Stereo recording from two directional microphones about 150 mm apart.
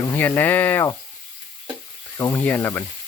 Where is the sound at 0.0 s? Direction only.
15° left (ahead or behind).